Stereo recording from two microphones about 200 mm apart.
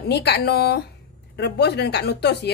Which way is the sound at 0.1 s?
55° left (ahead or behind).